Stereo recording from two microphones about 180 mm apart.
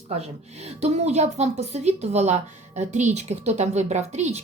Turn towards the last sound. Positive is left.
turn(degrees=-35)  # may be behind; listen again after turning